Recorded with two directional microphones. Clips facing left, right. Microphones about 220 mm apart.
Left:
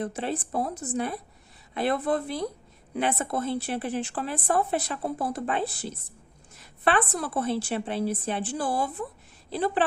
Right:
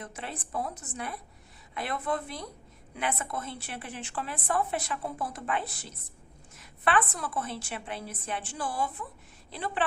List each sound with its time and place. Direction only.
0.0 s speech: 35° left (ahead or behind)